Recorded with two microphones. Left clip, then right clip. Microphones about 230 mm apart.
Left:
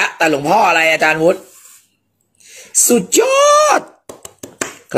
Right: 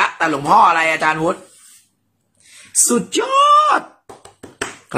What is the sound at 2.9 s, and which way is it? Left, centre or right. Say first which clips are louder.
Speech: left 6 dB; centre.